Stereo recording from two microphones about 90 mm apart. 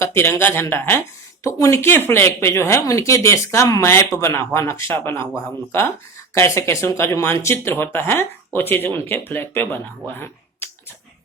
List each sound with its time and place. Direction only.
0.0 s speech: 30° left (ahead or behind)
1.8 s speech: 25° left (ahead or behind)
6.3 s speech: 35° left (ahead or behind)
10.2 s finger snapping: 25° left (ahead or behind)